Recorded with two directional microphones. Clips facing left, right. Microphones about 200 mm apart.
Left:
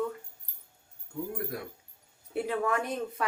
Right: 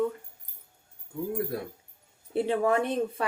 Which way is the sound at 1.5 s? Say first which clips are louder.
Right 4 dB; 30° right (ahead or behind).